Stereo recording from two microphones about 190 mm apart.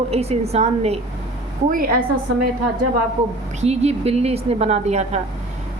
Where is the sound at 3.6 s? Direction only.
35° right (ahead or behind).